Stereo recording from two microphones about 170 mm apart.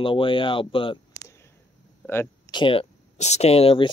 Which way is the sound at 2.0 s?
15° left (ahead or behind).